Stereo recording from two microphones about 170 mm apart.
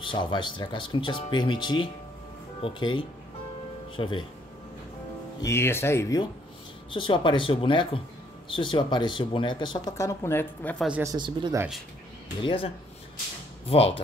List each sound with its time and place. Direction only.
0.0 s speech: 30° left (ahead or behind)
5.4 s speech: 15° left (ahead or behind)
6.9 s speech: 30° left (ahead or behind); by 10.9 s 10° left (ahead or behind)
10.9 s speech: 15° right (ahead or behind)
11.1 s speech: 30° right (ahead or behind)
12.4 s speech: 30° left (ahead or behind)